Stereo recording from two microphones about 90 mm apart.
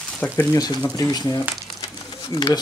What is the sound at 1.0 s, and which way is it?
Speech, 45° left (ahead or behind).